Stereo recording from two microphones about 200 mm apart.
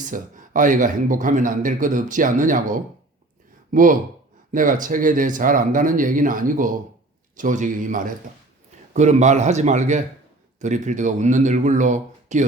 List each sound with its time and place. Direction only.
0.1 s a man's voice: 40° right (ahead or behind)